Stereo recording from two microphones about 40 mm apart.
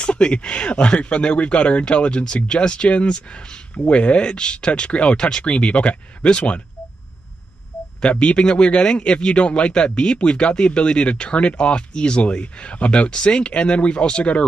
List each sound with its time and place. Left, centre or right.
0.0 s a man's voice: left
8.0 s a man's voice: left